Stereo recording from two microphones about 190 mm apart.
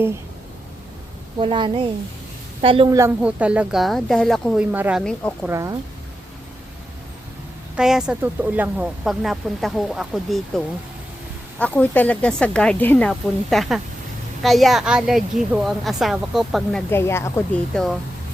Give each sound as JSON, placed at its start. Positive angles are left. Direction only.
{"t": 1.4, "sound": "a woman's voice", "side_deg": -25}
{"t": 2.9, "sound": "speech", "side_deg": -10}
{"t": 5.0, "sound": "speech", "side_deg": 5}
{"t": 5.5, "sound": "speech", "side_deg": -15}
{"t": 7.8, "sound": "speech", "side_deg": -5}
{"t": 11.6, "sound": "speech", "side_deg": 10}
{"t": 16.9, "sound": "speech", "side_deg": 15}